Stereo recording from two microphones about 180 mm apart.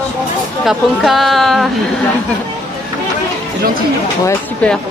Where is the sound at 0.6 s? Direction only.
Centre (ahead or behind).